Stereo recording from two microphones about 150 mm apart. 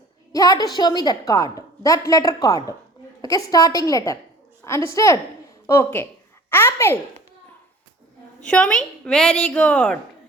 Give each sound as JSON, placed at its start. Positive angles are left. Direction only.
{"t": 0.3, "sound": "a woman's voice", "side_deg": 25}
{"t": 8.4, "sound": "a woman's voice", "side_deg": 5}